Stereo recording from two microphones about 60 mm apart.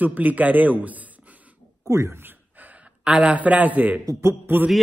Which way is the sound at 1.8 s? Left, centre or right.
Right.